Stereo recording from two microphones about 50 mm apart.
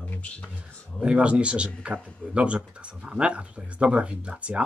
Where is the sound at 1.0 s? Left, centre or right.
Right.